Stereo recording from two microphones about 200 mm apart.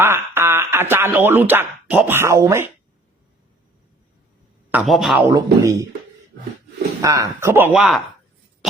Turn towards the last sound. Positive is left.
turn(degrees=-5)  # may be behind; listen again after turning